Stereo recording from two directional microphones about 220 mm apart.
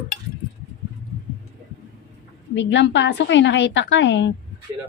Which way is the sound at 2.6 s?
55° left (ahead or behind).